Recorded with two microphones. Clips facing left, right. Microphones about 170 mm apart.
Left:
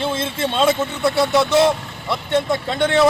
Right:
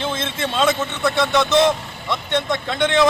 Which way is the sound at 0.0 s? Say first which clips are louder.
Left 2 dB; 30° left (ahead or behind).